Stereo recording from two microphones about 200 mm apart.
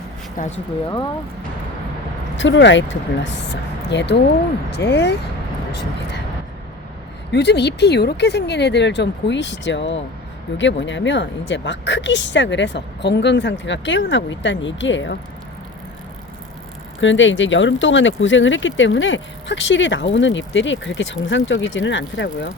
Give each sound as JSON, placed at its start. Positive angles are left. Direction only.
{"t": 0.4, "sound": "speech", "side_deg": 40}
{"t": 2.3, "sound": "speech", "side_deg": 65}
{"t": 7.3, "sound": "speech", "side_deg": 60}
{"t": 17.0, "sound": "speech", "side_deg": 70}